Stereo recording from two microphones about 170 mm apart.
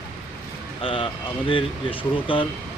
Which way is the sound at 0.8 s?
30° left (ahead or behind).